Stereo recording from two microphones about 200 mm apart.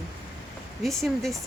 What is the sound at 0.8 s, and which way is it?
Speech, centre (ahead or behind).